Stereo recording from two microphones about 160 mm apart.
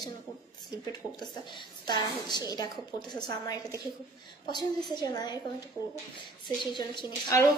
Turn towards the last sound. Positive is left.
turn(degrees=25)  # may be behind; listen again after turning